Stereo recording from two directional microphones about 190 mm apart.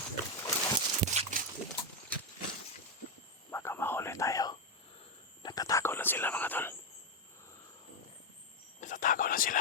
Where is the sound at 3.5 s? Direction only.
15° left (ahead or behind).